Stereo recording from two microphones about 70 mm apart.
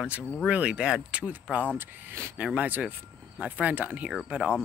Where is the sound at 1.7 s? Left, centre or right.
Right.